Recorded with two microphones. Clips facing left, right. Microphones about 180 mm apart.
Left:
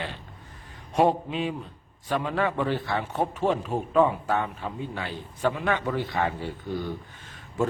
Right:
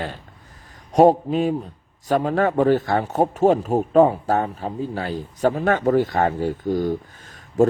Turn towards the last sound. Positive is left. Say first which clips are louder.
# right 10 dB
turn(degrees=-40)  # may be behind; listen again after turning